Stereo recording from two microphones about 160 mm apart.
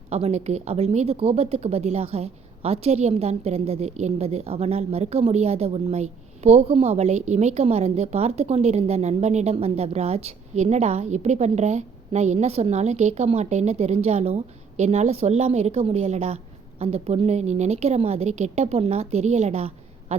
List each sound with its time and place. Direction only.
0.1 s a woman's voice: 40° right (ahead or behind)